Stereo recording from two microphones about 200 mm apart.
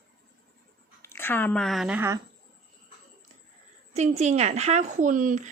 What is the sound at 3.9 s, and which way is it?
A woman's voice, 35° right (ahead or behind).